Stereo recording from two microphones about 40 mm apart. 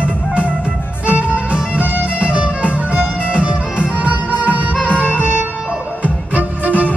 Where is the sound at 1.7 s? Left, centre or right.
Right.